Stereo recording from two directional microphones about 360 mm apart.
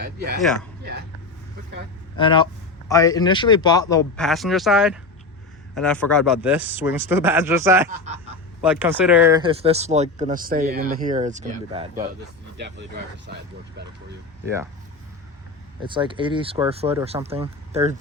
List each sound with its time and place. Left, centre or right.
2.1 s speech: centre
7.9 s speech: centre
8.6 s speech: centre
12.5 s speech: right
15.8 s speech: centre